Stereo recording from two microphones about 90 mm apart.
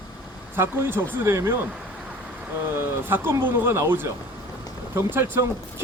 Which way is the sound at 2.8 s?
25° right (ahead or behind).